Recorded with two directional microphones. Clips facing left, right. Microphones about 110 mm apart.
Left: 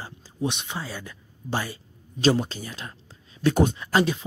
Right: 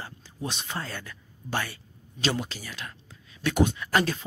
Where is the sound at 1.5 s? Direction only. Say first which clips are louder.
Left 2 dB; 25° left (ahead or behind).